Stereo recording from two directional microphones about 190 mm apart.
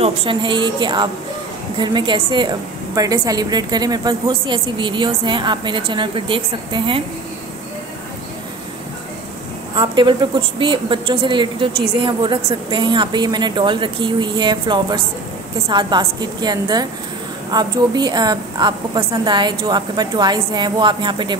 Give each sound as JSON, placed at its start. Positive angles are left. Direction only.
{"t": 0.0, "sound": "a woman's voice", "side_deg": -30}
{"t": 9.8, "sound": "a woman's voice", "side_deg": -25}